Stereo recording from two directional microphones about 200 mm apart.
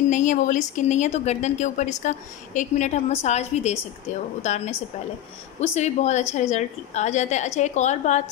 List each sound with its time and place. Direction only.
0.1 s speech: 40° left (ahead or behind)